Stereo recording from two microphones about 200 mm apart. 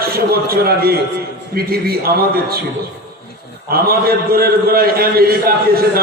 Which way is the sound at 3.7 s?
50° right (ahead or behind).